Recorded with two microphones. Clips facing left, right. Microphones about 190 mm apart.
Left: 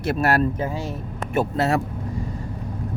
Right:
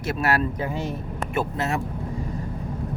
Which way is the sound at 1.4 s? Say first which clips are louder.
Left 5 dB; 35° left (ahead or behind).